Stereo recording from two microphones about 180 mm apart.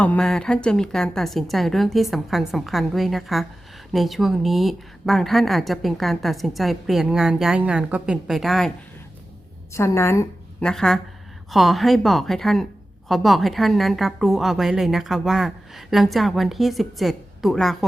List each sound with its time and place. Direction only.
0.0 s a woman's voice: 5° left (ahead or behind)
9.7 s a woman's voice: 15° left (ahead or behind)
10.6 s a woman's voice: 5° left (ahead or behind)